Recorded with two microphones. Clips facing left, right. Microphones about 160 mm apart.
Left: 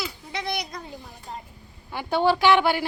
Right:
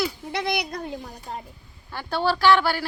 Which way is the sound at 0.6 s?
55° right (ahead or behind).